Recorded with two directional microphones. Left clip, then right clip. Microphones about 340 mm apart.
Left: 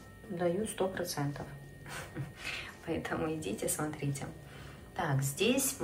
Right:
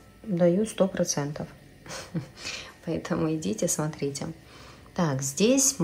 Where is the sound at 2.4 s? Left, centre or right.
Centre.